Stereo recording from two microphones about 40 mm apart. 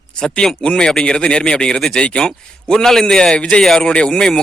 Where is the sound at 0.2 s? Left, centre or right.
Left.